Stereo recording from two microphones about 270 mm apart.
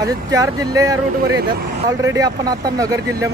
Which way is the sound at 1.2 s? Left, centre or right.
Right.